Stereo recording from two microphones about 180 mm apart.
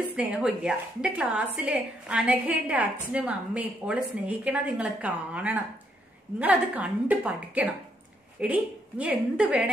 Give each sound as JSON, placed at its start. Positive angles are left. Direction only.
{"t": 0.1, "sound": "a woman's voice", "side_deg": -5}